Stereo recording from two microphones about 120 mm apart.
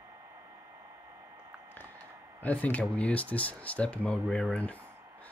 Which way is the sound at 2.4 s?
15° left (ahead or behind).